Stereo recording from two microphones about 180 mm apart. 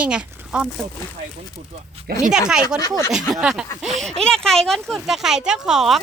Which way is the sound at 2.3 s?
5° right (ahead or behind).